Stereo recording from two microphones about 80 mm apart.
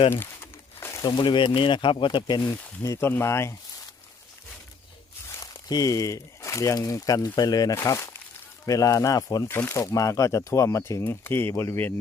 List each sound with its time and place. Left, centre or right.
0.8 s a sound: left
1.0 s speech: left
3.0 s speech: left
5.4 s speech: left
7.8 s speech: left
8.6 s speech: left